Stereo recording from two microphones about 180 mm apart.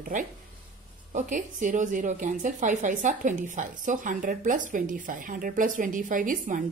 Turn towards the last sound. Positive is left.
turn(degrees=-45)  # may be behind; listen again after turning